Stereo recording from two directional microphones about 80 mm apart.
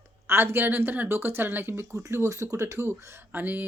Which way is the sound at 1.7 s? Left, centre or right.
Right.